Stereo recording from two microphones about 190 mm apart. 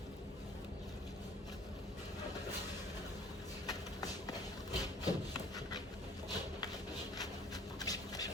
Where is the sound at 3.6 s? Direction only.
20° left (ahead or behind).